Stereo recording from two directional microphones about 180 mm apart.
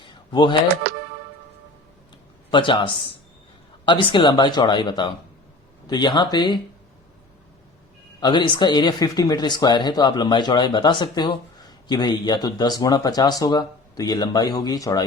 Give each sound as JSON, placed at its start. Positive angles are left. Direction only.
{"t": 0.0, "sound": "computer keyboard", "side_deg": 25}
{"t": 2.5, "sound": "speech", "side_deg": 25}
{"t": 8.2, "sound": "speech", "side_deg": 25}